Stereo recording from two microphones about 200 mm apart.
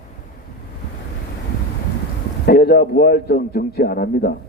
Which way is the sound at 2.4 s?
50° left (ahead or behind).